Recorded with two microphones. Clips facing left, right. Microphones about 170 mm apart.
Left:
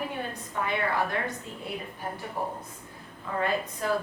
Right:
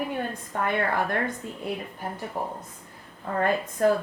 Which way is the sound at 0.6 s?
50° right (ahead or behind).